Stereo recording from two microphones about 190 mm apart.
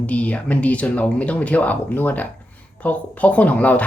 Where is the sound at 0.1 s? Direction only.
5° left (ahead or behind).